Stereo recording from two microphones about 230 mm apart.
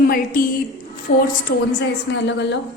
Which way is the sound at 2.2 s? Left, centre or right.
Left.